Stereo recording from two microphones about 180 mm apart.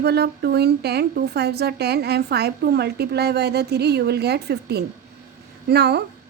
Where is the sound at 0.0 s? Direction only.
65° right (ahead or behind).